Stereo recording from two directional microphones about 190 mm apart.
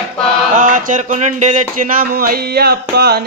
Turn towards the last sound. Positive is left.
turn(degrees=-55)  # may be behind; listen again after turning